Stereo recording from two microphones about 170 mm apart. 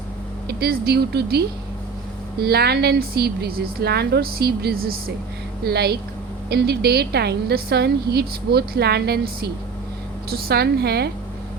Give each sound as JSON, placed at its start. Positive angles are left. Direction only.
{"t": 0.4, "sound": "a woman's voice", "side_deg": -65}